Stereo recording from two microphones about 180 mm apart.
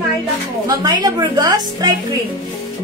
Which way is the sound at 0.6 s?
20° right (ahead or behind).